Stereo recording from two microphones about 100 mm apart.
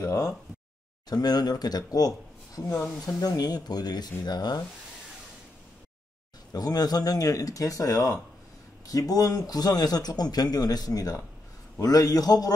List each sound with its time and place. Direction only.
0.0 s a man's voice: 30° left (ahead or behind)
6.5 s a man's voice: 40° left (ahead or behind)